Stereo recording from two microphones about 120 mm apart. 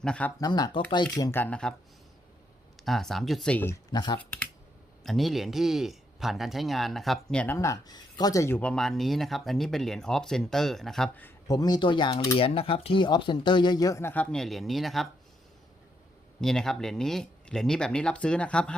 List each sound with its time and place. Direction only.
0.0 s speech: 10° left (ahead or behind)
0.3 s speech: 35° left (ahead or behind)
1.3 s speech: 15° left (ahead or behind)
2.8 s speech: centre (ahead or behind)
3.9 s speech: 40° left (ahead or behind)
4.2 s speech: 10° left (ahead or behind)
5.0 s speech: centre (ahead or behind)
7.4 s speech: 20° left (ahead or behind)
8.6 s speech: 5° left (ahead or behind)
11.4 s speech: 30° left (ahead or behind)
14.1 s speech: 10° left (ahead or behind)
16.4 s speech: 5° left (ahead or behind)